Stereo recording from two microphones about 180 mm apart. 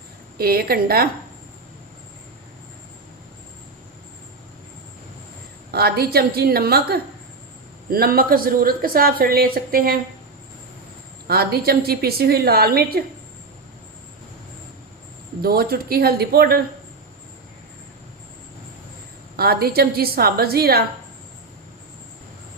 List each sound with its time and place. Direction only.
0.3 s speech: 55° right (ahead or behind)
5.7 s speech: 60° right (ahead or behind)
11.3 s speech: 60° right (ahead or behind)
15.4 s speech: 55° right (ahead or behind)
19.4 s speech: 60° right (ahead or behind)